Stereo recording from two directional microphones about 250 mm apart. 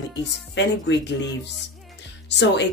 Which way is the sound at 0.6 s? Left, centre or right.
Left.